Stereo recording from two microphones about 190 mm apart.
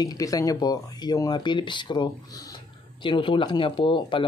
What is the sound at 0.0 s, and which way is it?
Speech, 20° left (ahead or behind).